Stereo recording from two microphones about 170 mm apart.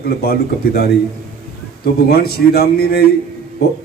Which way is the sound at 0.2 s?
65° left (ahead or behind).